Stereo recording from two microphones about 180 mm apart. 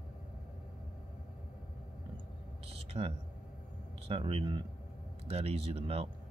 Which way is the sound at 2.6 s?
30° right (ahead or behind).